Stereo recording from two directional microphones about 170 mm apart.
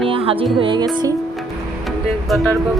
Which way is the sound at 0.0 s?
35° right (ahead or behind).